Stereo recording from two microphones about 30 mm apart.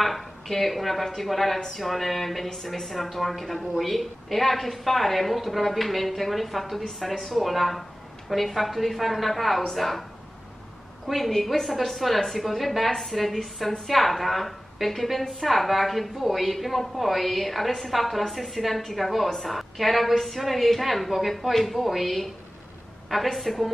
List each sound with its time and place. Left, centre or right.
0.0 s a woman's voice: centre
11.1 s a woman's voice: centre